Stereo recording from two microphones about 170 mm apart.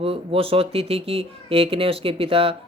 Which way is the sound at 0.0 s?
35° right (ahead or behind).